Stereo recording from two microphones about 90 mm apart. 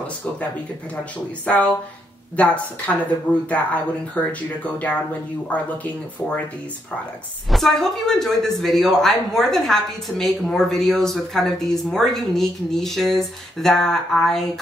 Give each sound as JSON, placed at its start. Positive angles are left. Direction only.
{"t": 1.4, "sound": "speech", "side_deg": 15}
{"t": 7.5, "sound": "speech", "side_deg": 0}